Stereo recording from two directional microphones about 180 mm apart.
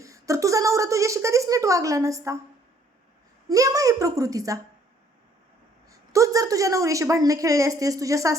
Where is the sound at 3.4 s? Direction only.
20° right (ahead or behind).